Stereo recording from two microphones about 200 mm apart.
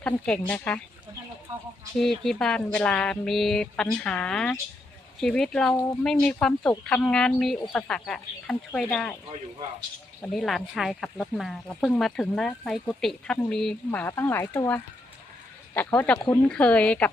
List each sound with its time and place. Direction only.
0.0 s speech: 5° left (ahead or behind)
2.0 s speech: centre (ahead or behind)
10.2 s speech: centre (ahead or behind)